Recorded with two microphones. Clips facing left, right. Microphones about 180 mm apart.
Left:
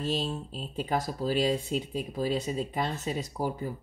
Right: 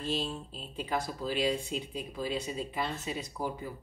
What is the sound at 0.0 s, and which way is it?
Speech, 45° left (ahead or behind).